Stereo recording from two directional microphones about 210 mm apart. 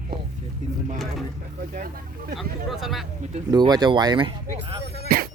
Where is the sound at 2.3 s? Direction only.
Centre (ahead or behind).